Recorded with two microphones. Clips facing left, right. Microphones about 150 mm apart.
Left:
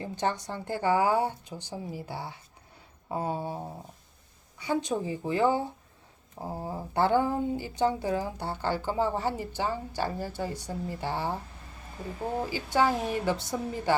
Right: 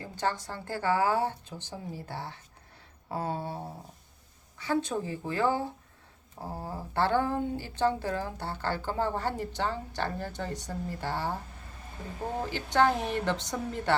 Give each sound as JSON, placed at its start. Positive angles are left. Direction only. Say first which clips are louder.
{"t": 0.0, "sound": "speech", "louder": "left 2 dB", "side_deg": 20}
{"t": 12.5, "sound": "speech", "louder": "right 1 dB", "side_deg": 10}